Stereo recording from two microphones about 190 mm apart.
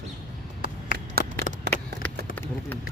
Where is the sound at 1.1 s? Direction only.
55° right (ahead or behind).